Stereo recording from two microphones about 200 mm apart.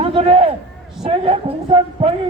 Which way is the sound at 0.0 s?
25° right (ahead or behind).